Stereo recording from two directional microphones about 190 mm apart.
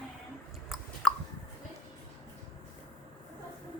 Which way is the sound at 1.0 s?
Centre (ahead or behind).